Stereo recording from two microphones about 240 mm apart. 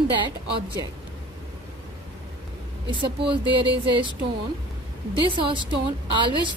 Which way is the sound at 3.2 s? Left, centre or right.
Right.